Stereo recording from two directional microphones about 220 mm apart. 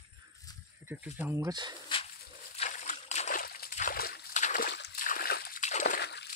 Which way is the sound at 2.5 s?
30° left (ahead or behind).